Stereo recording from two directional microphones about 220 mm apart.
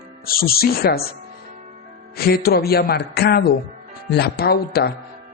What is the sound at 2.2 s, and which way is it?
Speech, 45° left (ahead or behind).